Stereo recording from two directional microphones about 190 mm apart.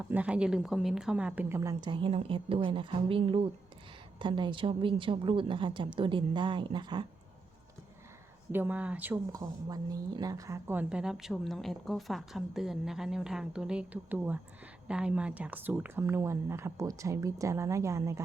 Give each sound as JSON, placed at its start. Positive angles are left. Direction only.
{"t": 0.0, "sound": "a woman's voice", "side_deg": -5}
{"t": 8.5, "sound": "a woman's voice", "side_deg": -10}